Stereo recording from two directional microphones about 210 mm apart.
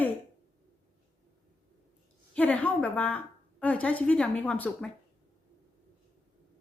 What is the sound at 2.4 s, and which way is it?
A woman's voice, 5° left (ahead or behind).